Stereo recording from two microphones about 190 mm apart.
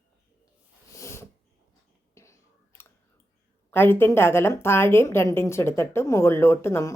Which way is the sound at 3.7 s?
10° left (ahead or behind).